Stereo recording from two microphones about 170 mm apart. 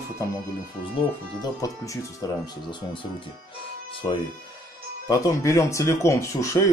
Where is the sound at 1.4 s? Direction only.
20° left (ahead or behind).